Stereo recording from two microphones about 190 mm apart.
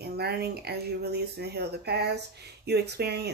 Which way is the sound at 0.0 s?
55° right (ahead or behind).